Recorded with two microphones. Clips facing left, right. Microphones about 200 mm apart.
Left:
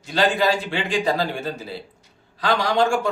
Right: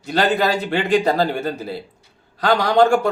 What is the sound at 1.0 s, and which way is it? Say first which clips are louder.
Speech: right 4 dB; 40° right (ahead or behind).